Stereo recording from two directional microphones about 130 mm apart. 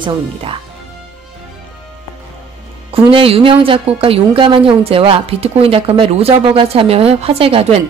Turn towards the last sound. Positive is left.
turn(degrees=-50)  # may be behind; listen again after turning